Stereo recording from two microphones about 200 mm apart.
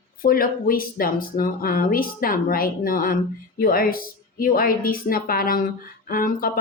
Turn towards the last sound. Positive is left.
turn(degrees=45)  # may be behind; listen again after turning